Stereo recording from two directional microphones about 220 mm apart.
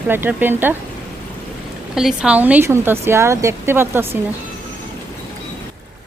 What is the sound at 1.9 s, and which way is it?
Speech, centre (ahead or behind).